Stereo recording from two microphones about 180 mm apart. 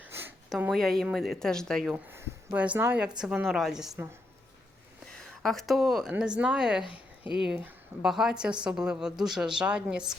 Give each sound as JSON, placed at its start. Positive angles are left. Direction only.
{"t": 0.0, "sound": "a sound", "side_deg": -10}
{"t": 0.5, "sound": "a woman's voice", "side_deg": 0}
{"t": 2.0, "sound": "a woman's voice", "side_deg": -10}
{"t": 5.4, "sound": "a woman's voice", "side_deg": 0}
{"t": 6.8, "sound": "a sound", "side_deg": 30}
{"t": 7.3, "sound": "a woman's voice", "side_deg": -5}